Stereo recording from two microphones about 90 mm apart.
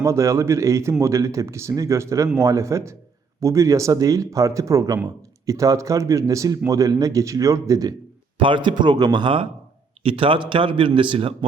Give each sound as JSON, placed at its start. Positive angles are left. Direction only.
{"t": 0.0, "sound": "speech", "side_deg": -35}
{"t": 8.4, "sound": "speech", "side_deg": -70}
{"t": 10.0, "sound": "a man's voice", "side_deg": -85}